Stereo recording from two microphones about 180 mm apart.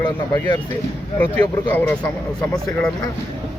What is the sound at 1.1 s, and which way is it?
Speech, 10° left (ahead or behind).